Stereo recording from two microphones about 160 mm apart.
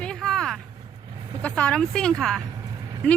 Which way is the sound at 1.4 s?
10° left (ahead or behind).